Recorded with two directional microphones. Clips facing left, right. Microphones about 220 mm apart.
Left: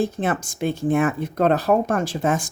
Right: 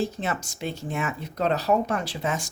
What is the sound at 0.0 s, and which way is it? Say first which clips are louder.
Speech: left 5 dB; 50° left (ahead or behind).